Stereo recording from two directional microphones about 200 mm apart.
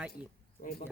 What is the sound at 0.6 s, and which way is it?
Speech, 45° left (ahead or behind).